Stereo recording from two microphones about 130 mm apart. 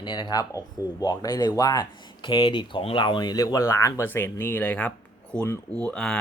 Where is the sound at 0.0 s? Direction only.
35° left (ahead or behind).